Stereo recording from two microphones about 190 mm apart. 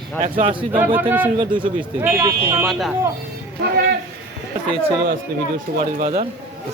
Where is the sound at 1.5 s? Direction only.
25° right (ahead or behind).